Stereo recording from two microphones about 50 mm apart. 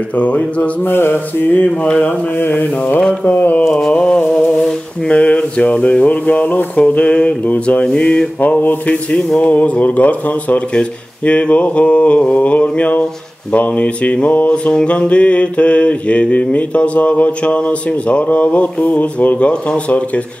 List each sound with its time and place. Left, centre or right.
0.2 s mantra: left
0.8 s speech: left
1.9 s mantra: left
2.3 s mantra: left
3.0 s mantra: left
3.3 s speech: left
3.9 s mantra: centre
4.3 s a sound: centre
5.0 s mantra: left
9.1 s a sound: centre
9.5 s speech: left
10.7 s mantra: left